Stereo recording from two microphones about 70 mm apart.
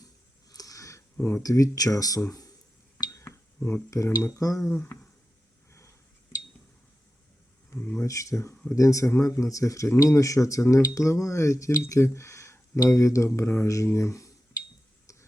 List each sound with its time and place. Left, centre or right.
0.5 s a sound: left
1.2 s speech: left
3.1 s cutlery: left
4.4 s speech: left
8.0 s speech: left
15.1 s a sound: left